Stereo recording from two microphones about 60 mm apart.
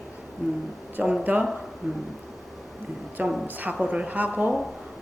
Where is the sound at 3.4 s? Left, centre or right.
Right.